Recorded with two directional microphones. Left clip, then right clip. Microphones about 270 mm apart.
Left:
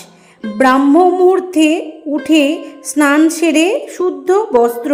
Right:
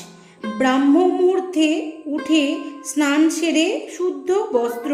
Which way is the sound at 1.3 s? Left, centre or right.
Left.